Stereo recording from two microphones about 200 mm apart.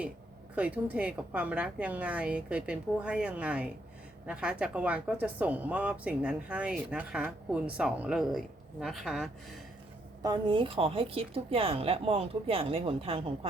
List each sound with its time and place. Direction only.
0.5 s a woman's voice: 5° right (ahead or behind)
10.2 s a woman's voice: 25° right (ahead or behind)